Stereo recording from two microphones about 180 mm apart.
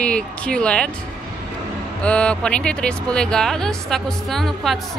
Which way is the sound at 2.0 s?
5° left (ahead or behind).